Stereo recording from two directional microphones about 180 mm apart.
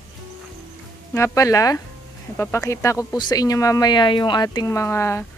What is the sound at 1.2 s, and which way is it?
Speech, 20° left (ahead or behind).